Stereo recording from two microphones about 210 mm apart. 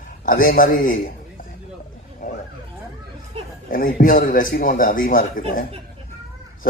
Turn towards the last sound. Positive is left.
turn(degrees=40)  # may be behind; listen again after turning